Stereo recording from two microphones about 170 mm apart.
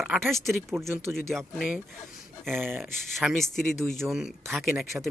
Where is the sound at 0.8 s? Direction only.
15° right (ahead or behind).